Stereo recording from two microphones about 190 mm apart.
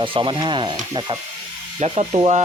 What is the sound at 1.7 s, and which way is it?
Speech, 35° right (ahead or behind).